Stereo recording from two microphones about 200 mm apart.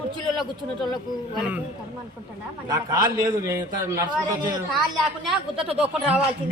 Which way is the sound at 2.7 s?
20° right (ahead or behind).